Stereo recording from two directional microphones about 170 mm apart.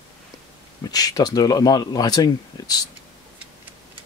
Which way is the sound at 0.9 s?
20° left (ahead or behind).